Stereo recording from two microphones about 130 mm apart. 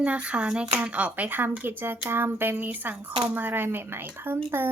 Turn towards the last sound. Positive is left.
turn(degrees=-15)  # may be behind; listen again after turning